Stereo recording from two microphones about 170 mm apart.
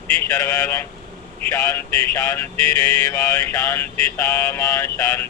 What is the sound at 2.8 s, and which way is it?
Mantra, 20° left (ahead or behind).